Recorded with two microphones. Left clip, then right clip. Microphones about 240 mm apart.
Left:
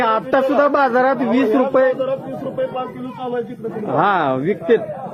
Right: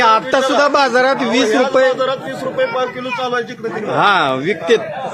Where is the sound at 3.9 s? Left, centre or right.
Centre.